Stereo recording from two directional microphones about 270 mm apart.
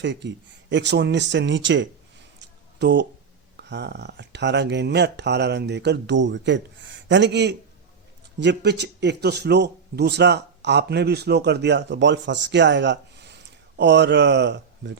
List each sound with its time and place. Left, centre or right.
0.0 s speech: right
2.4 s a sound: right
3.6 s speech: right